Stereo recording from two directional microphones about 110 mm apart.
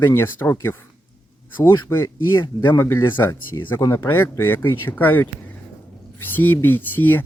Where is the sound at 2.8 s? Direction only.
20° left (ahead or behind).